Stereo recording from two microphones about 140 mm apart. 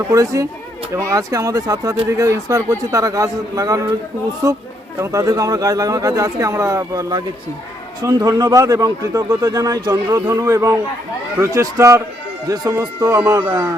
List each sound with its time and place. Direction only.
0.1 s speech: 25° right (ahead or behind)